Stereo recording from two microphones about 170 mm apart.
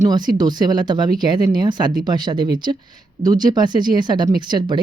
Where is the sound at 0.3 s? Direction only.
25° right (ahead or behind).